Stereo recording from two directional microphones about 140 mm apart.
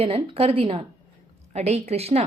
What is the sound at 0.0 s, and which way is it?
Speech, 45° right (ahead or behind).